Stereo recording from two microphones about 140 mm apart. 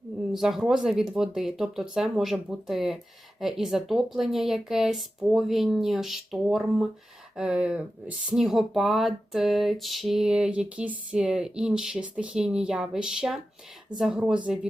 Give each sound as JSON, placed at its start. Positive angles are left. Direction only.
{"t": 0.3, "sound": "speech", "side_deg": 0}